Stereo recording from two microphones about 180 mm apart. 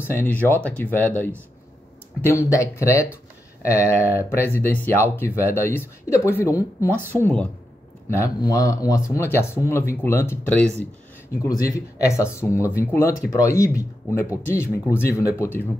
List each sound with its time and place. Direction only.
0.0 s speech: 10° left (ahead or behind)
4.2 s speech: 15° left (ahead or behind)